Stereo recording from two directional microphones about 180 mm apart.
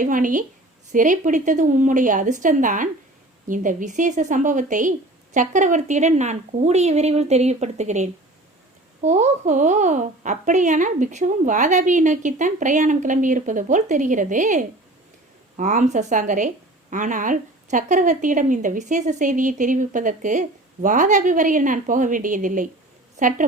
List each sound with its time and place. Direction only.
0.0 s a woman's voice: 50° right (ahead or behind)